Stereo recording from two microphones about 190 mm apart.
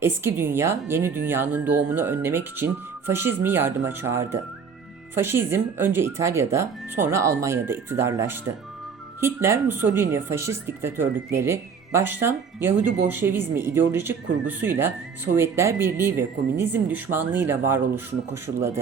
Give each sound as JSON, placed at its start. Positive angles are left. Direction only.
{"t": 0.0, "sound": "speech", "side_deg": -15}
{"t": 18.5, "sound": "a man's voice", "side_deg": -45}